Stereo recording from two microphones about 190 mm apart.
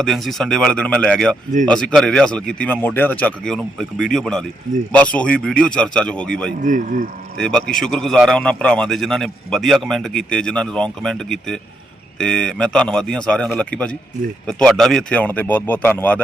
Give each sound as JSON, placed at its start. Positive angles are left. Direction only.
{"t": 0.0, "sound": "a man's voice", "side_deg": 0}
{"t": 6.6, "sound": "speech", "side_deg": -45}
{"t": 7.3, "sound": "a man's voice", "side_deg": 5}